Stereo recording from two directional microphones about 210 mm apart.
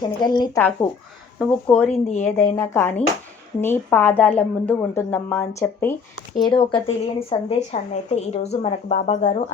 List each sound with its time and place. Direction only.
0.0 s a woman's voice: 20° left (ahead or behind)
6.4 s speech: 25° left (ahead or behind)